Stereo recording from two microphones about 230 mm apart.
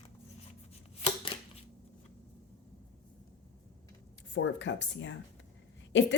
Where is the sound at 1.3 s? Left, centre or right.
Left.